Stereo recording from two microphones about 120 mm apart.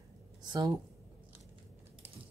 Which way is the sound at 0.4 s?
35° right (ahead or behind).